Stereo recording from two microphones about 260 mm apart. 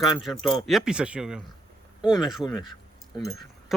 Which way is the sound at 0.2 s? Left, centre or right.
Centre.